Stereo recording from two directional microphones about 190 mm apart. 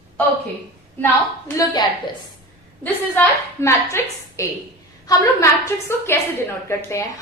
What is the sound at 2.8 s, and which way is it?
A woman's voice, 10° left (ahead or behind).